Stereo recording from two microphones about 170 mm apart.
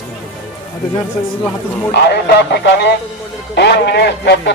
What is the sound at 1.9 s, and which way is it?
Speech, 80° left.